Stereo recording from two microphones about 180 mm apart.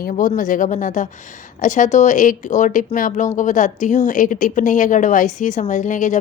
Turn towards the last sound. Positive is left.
turn(degrees=45)  # may be behind; listen again after turning